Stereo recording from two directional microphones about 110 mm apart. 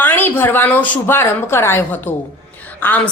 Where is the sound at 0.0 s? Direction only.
20° left (ahead or behind).